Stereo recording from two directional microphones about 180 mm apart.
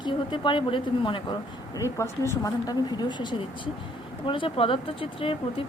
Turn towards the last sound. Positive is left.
turn(degrees=30)  # may be behind; listen again after turning